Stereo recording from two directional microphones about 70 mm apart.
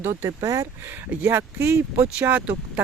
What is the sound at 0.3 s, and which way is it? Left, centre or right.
Speech, right.